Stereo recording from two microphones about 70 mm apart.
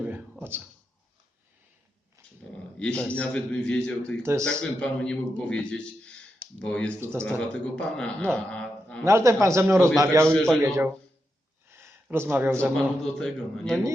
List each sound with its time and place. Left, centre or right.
2.7 s a man's voice: centre
4.2 s speech: right
4.4 s a man's voice: centre
9.0 s a man's voice: right
10.3 s a man's voice: centre
11.7 s a sound: right
12.1 s speech: right
12.7 s a man's voice: centre